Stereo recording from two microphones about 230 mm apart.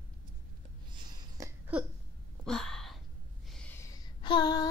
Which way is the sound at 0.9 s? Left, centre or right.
Centre.